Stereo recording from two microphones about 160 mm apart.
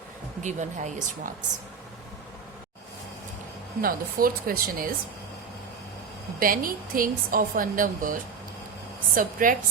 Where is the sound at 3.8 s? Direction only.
65° right (ahead or behind).